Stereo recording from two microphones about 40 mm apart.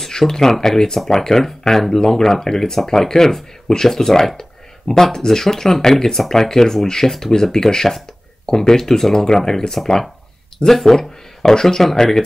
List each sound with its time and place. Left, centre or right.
0.0 s speech: centre
11.0 s speech: centre